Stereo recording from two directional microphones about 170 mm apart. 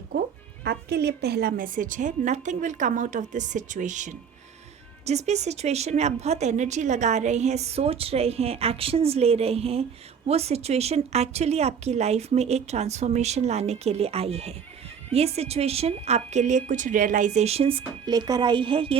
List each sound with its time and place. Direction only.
0.6 s a woman's voice: 70° right (ahead or behind); by 18.9 s 30° right (ahead or behind)